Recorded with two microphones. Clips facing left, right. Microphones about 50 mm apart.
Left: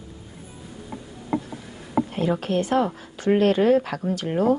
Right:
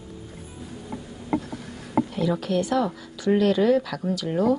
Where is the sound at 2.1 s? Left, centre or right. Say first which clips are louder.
Left 1 dB; left.